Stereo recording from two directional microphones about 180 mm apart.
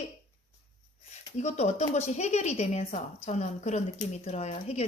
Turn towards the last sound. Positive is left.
turn(degrees=35)  # may be behind; listen again after turning